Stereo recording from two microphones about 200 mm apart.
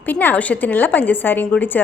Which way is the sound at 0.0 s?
10° left (ahead or behind).